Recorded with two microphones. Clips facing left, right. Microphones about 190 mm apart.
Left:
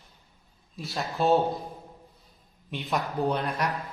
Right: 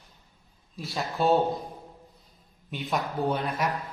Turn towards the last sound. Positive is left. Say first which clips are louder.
# even
turn(degrees=0)  # may be behind; listen again after turning